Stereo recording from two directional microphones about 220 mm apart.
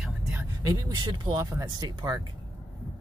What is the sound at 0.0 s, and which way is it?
Speech, 5° right (ahead or behind).